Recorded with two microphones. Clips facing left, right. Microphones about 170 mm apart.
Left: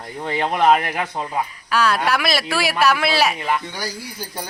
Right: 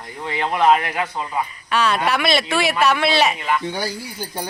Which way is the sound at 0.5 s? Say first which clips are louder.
Right 1 dB; 50° left (ahead or behind).